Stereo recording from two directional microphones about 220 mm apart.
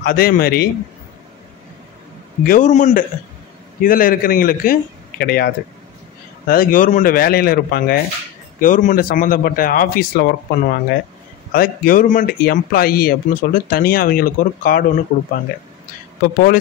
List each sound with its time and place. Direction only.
0.0 s speech: 40° left (ahead or behind)
2.4 s speech: 35° left (ahead or behind)